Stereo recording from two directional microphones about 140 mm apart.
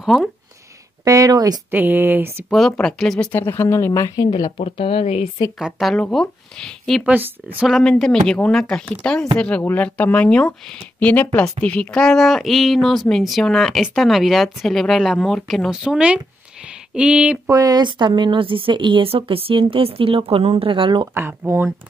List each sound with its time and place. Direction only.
0.0 s speech: centre (ahead or behind)
1.0 s speech: 25° right (ahead or behind)
1.7 s speech: 15° right (ahead or behind)
2.5 s speech: centre (ahead or behind)
3.3 s speech: 15° left (ahead or behind)
4.5 s speech: 45° left (ahead or behind)
5.6 s speech: centre (ahead or behind)
7.1 s speech: 15° right (ahead or behind)
7.6 s speech: 5° left (ahead or behind)
16.6 s a sound: 5° right (ahead or behind)
17.5 s speech: 25° right (ahead or behind)
21.1 s speech: 15° right (ahead or behind)